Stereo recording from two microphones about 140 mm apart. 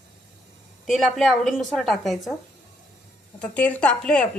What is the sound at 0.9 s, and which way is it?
Speech, centre (ahead or behind).